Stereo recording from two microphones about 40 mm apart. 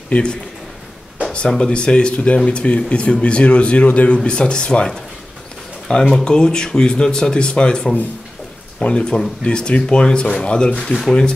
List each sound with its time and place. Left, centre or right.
0.1 s speech: left
1.6 s speech: left
4.2 s speech: left
10.9 s speech: centre